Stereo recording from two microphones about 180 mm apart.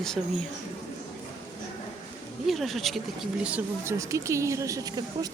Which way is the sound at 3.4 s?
10° right (ahead or behind).